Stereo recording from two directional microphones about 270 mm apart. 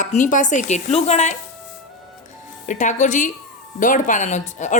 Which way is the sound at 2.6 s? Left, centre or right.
Left.